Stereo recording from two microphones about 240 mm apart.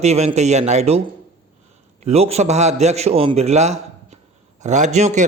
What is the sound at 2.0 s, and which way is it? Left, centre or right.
A man's voice, right.